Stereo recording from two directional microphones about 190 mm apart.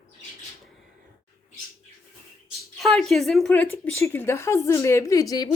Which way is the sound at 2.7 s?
Centre (ahead or behind).